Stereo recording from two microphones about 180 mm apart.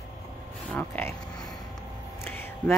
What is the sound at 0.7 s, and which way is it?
Speech, 10° left (ahead or behind).